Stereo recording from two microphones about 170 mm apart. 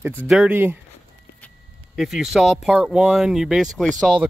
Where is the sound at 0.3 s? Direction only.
10° right (ahead or behind).